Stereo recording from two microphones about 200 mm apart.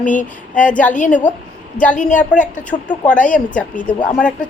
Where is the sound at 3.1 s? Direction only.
5° left (ahead or behind).